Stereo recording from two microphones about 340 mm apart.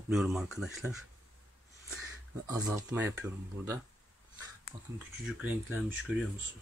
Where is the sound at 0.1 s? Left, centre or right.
Centre.